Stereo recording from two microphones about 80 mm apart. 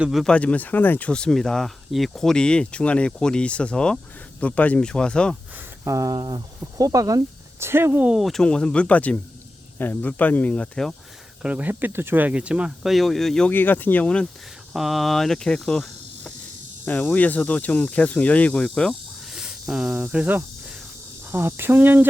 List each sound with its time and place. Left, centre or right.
0.3 s speech: centre
5.8 s speech: right
6.1 s speech: right
6.6 s speech: right
7.6 s speech: right
8.2 s speech: centre
11.4 s speech: centre
12.8 s speech: centre
13.5 s speech: left
14.7 s cricket: centre
16.8 s speech: left
18.9 s cricket: centre
21.2 s speech: right